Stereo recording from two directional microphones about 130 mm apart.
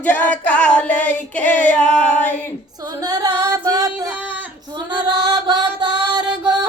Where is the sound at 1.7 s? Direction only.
10° left (ahead or behind).